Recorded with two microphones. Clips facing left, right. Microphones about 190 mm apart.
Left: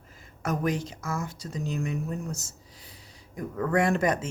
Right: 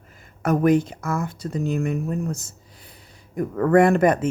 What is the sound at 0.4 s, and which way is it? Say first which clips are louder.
Speech: right 10 dB; 55° right (ahead or behind).